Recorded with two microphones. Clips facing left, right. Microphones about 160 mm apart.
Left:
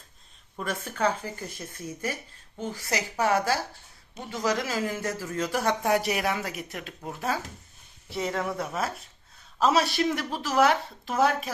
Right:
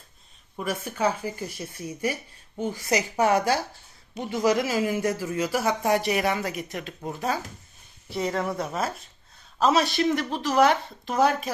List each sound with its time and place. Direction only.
0.5 s speech: 10° right (ahead or behind)